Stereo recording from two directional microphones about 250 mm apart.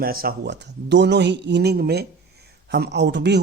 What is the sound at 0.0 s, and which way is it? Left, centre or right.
Speech, right.